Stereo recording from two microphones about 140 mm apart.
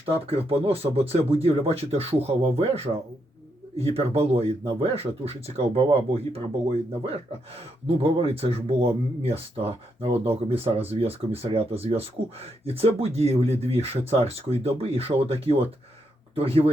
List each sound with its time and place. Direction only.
0.0 s speech: 45° right (ahead or behind)